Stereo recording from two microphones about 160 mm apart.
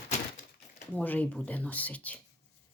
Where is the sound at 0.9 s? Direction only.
10° left (ahead or behind).